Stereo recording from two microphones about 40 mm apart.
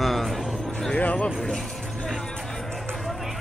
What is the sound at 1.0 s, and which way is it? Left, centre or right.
Speech, left.